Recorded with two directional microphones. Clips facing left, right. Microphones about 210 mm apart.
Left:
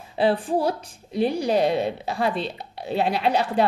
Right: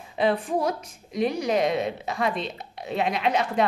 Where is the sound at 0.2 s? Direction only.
30° left (ahead or behind).